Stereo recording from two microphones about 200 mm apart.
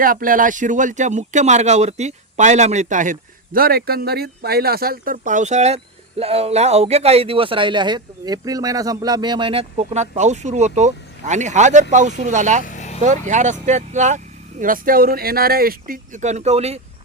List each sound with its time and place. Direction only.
0.0 s speech: 45° right (ahead or behind)
12.6 s vehicle: 35° left (ahead or behind)
13.0 s speech: 35° right (ahead or behind)